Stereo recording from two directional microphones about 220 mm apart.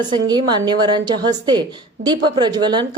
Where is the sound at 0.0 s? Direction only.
20° right (ahead or behind).